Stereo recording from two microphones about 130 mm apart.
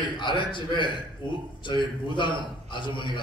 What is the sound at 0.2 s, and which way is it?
Speech, 35° left (ahead or behind).